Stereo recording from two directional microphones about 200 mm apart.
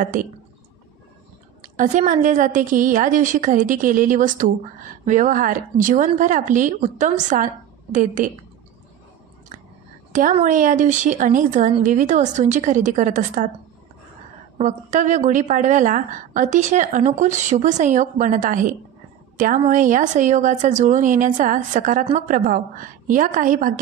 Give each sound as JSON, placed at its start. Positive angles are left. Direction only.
{"t": 0.0, "sound": "speech", "side_deg": -45}
{"t": 1.8, "sound": "a woman's voice", "side_deg": -40}
{"t": 10.4, "sound": "a woman's voice", "side_deg": -40}
{"t": 14.6, "sound": "a woman's voice", "side_deg": -40}